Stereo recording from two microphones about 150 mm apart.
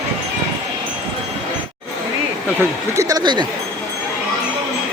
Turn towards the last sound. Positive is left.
turn(degrees=-25)  # may be behind; listen again after turning